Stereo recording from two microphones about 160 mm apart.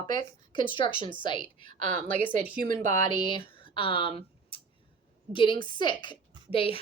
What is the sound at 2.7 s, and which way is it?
Speech, 55° right (ahead or behind).